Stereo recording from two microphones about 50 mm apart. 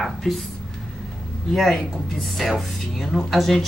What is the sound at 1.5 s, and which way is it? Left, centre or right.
Speech, centre.